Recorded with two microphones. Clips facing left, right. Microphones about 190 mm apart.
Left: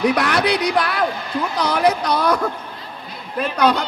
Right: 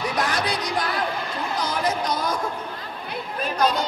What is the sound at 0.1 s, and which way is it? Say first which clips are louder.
A man's voice: left 7 dB; 70° left (ahead or behind).